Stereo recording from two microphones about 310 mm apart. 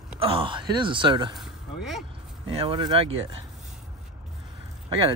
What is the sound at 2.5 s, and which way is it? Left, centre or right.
Speech, centre.